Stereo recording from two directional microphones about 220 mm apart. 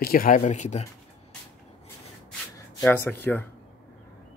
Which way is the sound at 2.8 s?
5° left (ahead or behind).